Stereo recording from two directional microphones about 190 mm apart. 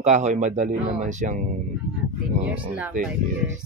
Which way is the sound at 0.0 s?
40° right (ahead or behind).